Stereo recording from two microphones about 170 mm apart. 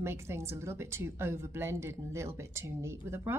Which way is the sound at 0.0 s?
15° right (ahead or behind).